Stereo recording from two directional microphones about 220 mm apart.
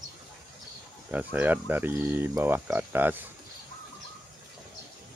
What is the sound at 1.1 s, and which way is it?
Speech, 10° right (ahead or behind).